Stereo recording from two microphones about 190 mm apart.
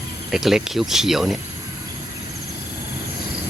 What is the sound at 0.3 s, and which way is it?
Speech, centre (ahead or behind).